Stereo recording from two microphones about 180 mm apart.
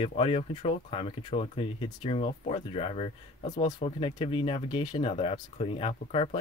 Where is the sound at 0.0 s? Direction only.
35° left (ahead or behind).